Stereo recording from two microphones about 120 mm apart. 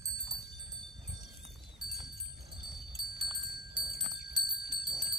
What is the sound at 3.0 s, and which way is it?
Bell, 40° right (ahead or behind).